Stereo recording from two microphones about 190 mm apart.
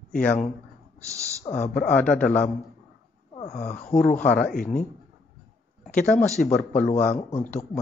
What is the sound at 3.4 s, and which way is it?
Speech, 35° left (ahead or behind).